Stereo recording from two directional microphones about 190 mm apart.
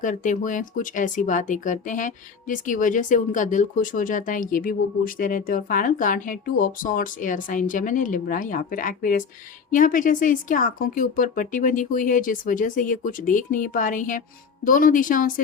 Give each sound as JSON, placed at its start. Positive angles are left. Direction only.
{"t": 0.0, "sound": "speech", "side_deg": 40}